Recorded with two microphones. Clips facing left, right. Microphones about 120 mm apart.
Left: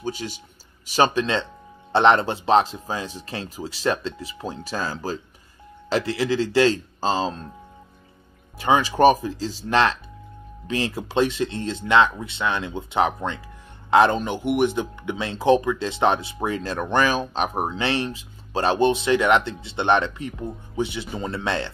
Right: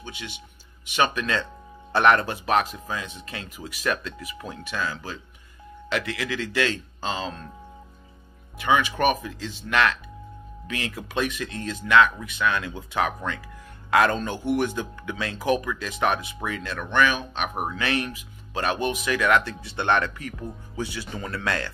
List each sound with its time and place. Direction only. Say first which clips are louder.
0.0 s speech: left 9 dB; 35° left (ahead or behind)
8.5 s speech: left 4 dB; 35° left (ahead or behind)